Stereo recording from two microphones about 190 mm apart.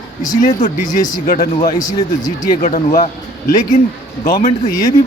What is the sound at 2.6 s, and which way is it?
Speech, 35° left (ahead or behind).